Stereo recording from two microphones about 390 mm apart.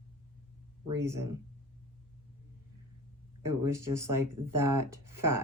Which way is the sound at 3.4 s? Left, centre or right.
Centre.